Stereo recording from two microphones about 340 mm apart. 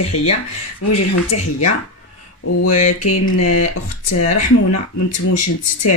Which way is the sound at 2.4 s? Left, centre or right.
Left.